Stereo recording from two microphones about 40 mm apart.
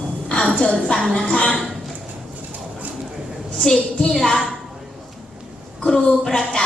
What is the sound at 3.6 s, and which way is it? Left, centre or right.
Speech, centre.